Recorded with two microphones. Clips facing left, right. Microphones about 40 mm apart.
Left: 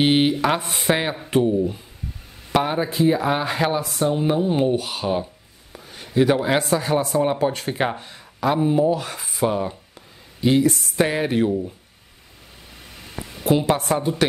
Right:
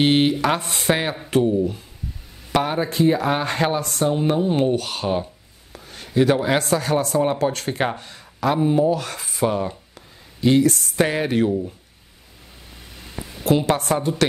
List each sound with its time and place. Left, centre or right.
0.0 s speech: centre
4.0 s speech: centre
5.7 s a sound: centre
6.6 s speech: centre
8.5 s speech: centre
8.8 s speech: centre
13.4 s speech: centre